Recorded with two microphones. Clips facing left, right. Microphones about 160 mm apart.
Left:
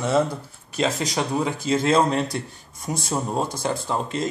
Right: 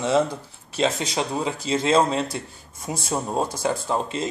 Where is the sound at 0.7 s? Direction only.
25° right (ahead or behind).